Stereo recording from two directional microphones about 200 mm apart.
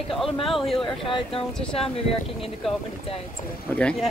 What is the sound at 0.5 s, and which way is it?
Speech, centre (ahead or behind).